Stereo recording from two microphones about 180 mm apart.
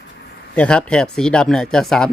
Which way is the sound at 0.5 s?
5° left (ahead or behind).